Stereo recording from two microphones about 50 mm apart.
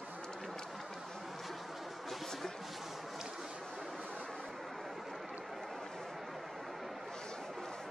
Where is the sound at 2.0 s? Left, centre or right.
Centre.